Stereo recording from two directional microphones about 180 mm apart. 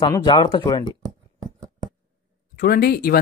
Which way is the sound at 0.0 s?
25° left (ahead or behind).